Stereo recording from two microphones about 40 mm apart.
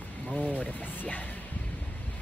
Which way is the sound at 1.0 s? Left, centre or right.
Left.